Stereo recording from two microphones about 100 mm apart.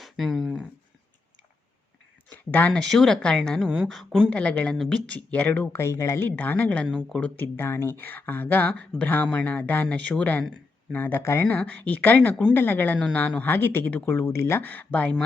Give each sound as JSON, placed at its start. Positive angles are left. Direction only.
{"t": 0.0, "sound": "a sound", "side_deg": 0}
{"t": 2.3, "sound": "speech", "side_deg": 15}
{"t": 6.8, "sound": "speech", "side_deg": 5}